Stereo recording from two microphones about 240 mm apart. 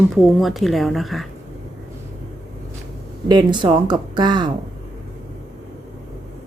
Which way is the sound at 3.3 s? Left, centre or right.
Centre.